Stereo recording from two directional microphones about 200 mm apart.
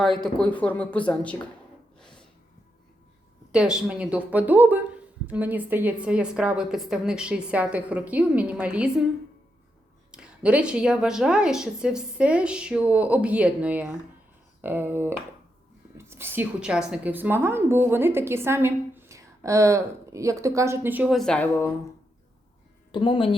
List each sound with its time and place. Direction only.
0.0 s speech: centre (ahead or behind)
2.0 s snort: 5° left (ahead or behind)
3.5 s a woman's voice: 5° right (ahead or behind)
10.1 s a woman's voice: 5° right (ahead or behind)
22.9 s speech: 25° left (ahead or behind)